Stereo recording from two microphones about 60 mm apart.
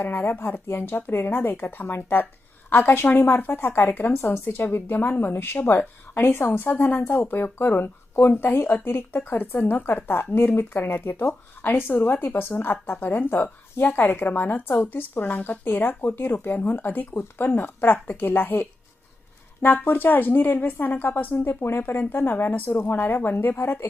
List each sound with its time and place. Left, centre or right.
0.0 s a woman's voice: left